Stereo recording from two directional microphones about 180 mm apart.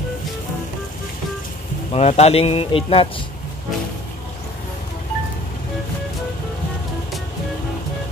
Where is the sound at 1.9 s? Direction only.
35° left (ahead or behind).